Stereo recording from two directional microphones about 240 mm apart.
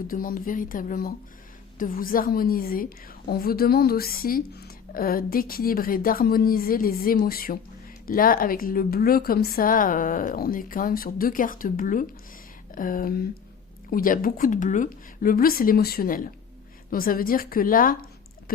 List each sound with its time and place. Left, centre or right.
0.1 s speech: left